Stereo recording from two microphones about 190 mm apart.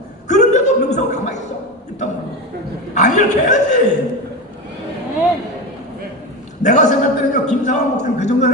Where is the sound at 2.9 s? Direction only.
40° left (ahead or behind).